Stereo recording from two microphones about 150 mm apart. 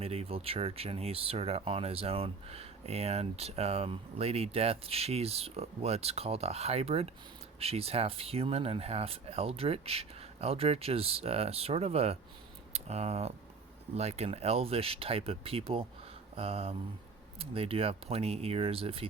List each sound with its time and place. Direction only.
0.0 s speech: 40° right (ahead or behind)